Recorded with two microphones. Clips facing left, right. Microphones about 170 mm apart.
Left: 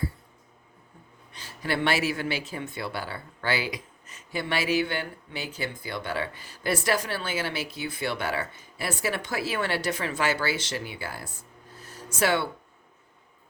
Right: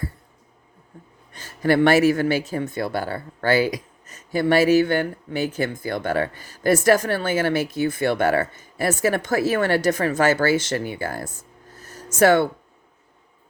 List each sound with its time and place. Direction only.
1.3 s speech: 45° right (ahead or behind)